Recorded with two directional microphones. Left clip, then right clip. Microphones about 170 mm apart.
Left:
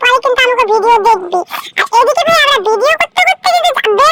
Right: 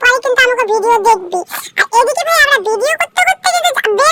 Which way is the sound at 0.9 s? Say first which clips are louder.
Left 1 dB; 20° left (ahead or behind).